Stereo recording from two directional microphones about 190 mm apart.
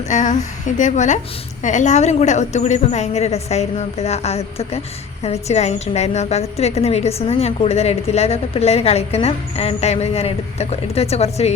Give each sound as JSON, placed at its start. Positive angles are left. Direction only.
{"t": 0.1, "sound": "a woman's voice", "side_deg": 40}